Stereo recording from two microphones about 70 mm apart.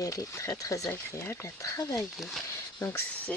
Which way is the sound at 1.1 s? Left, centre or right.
Left.